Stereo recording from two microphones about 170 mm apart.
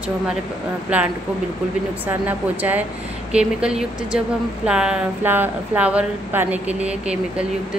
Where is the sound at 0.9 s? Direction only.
10° right (ahead or behind).